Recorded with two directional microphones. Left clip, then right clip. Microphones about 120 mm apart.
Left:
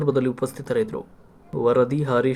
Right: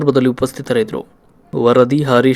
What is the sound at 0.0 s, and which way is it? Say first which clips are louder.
Speech: right 8 dB; 40° right (ahead or behind).